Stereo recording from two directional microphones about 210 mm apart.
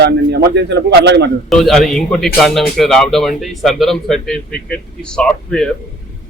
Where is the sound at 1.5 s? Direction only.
Centre (ahead or behind).